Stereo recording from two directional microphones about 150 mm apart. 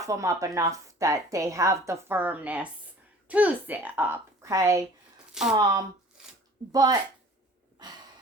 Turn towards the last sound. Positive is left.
turn(degrees=-25)  # may be behind; listen again after turning